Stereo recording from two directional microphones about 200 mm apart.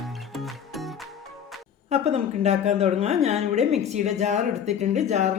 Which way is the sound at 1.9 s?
35° right (ahead or behind).